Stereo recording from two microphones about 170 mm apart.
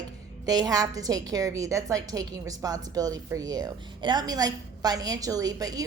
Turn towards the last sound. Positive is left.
turn(degrees=-20)  # may be behind; listen again after turning